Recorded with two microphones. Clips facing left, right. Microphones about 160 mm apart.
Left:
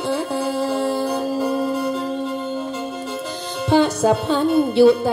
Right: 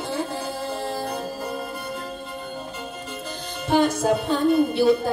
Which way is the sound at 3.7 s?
75° left (ahead or behind).